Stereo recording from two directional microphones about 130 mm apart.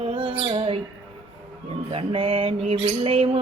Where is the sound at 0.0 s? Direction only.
45° right (ahead or behind).